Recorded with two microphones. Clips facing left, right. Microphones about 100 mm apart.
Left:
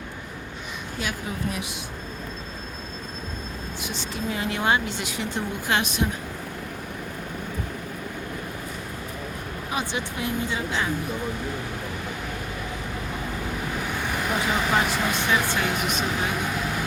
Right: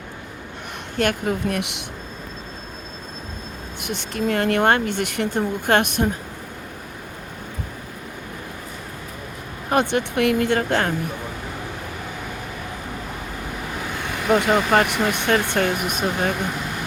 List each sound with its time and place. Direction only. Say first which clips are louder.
0.9 s speech: right 10 dB; 60° right (ahead or behind)
3.8 s speech: right 7 dB; 60° right (ahead or behind)
9.6 s speech: right 10 dB; 60° right (ahead or behind)
14.3 s speech: right 7 dB; 60° right (ahead or behind)
15.5 s speech: right 4 dB; 50° right (ahead or behind)